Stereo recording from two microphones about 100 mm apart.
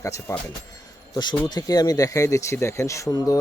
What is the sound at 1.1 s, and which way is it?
Speech, 45° left (ahead or behind).